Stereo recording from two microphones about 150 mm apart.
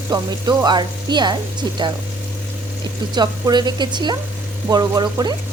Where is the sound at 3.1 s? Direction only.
30° right (ahead or behind).